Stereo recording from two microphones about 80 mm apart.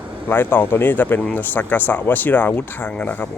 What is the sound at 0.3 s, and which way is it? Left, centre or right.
Speech, left.